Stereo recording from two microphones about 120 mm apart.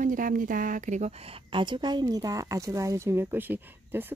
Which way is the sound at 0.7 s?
90° right.